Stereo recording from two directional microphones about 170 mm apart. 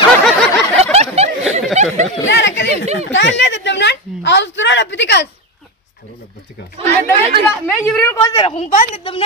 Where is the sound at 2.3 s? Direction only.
90° left.